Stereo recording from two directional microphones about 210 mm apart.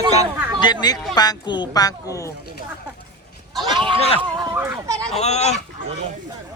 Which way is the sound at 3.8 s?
25° right (ahead or behind).